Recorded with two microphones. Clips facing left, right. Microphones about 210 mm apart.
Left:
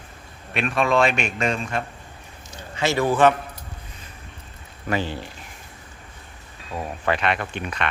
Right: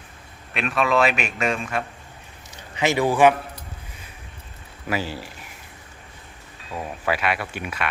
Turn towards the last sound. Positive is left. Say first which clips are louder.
# left 1 dB
turn(degrees=-5)  # may be behind; listen again after turning